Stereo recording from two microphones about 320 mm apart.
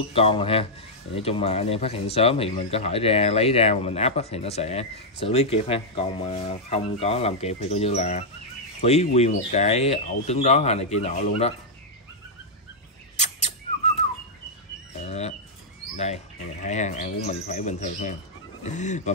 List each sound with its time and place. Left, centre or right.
0.1 s speech: centre
15.0 s bird: centre
16.6 s speech: left